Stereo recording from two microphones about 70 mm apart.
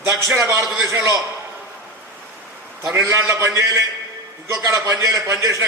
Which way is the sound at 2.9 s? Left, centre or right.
Right.